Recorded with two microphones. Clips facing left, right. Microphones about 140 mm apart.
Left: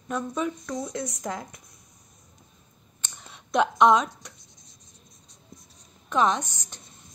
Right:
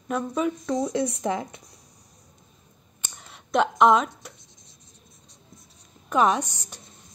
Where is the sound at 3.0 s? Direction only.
Centre (ahead or behind).